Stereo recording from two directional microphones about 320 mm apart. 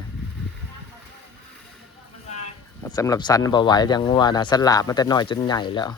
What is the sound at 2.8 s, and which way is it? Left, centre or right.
Speech, centre.